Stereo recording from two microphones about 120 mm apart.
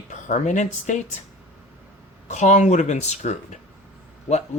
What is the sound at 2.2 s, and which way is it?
Speech, 80° left.